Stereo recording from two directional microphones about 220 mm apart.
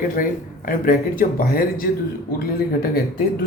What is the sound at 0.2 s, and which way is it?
Speech, 40° left (ahead or behind).